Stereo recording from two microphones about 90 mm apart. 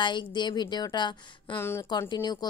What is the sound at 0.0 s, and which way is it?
A woman's voice, 60° left (ahead or behind).